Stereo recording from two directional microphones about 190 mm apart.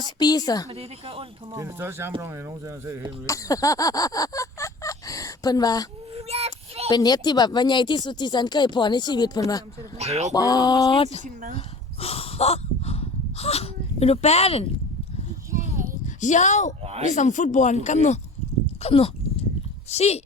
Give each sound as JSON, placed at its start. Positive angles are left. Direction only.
{"t": 0.2, "sound": "speech", "side_deg": 20}
{"t": 0.7, "sound": "speech", "side_deg": -30}
{"t": 1.5, "sound": "speech", "side_deg": -15}
{"t": 3.2, "sound": "a sound", "side_deg": 15}
{"t": 6.1, "sound": "child singing", "side_deg": -35}
{"t": 6.9, "sound": "speech", "side_deg": 20}
{"t": 10.0, "sound": "speech", "side_deg": -35}
{"t": 10.3, "sound": "speech", "side_deg": 20}
{"t": 11.5, "sound": "a sound", "side_deg": 30}
{"t": 15.5, "sound": "a sound", "side_deg": -45}
{"t": 16.0, "sound": "speech", "side_deg": 40}
{"t": 16.8, "sound": "speech", "side_deg": -35}
{"t": 17.1, "sound": "speech", "side_deg": 40}